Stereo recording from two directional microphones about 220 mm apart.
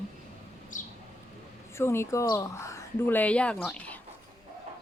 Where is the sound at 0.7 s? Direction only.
35° left (ahead or behind).